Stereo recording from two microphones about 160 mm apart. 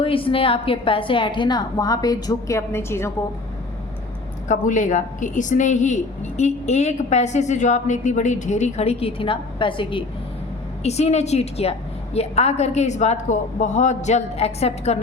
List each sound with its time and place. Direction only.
0.0 s a woman's voice: 35° left (ahead or behind); by 3.1 s 15° left (ahead or behind)
4.4 s a woman's voice: 50° left (ahead or behind); by 10.0 s 30° left (ahead or behind)
10.8 s a woman's voice: 40° left (ahead or behind)